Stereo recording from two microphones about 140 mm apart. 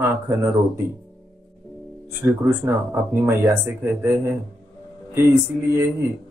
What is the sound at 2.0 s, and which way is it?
Speech, 20° right (ahead or behind).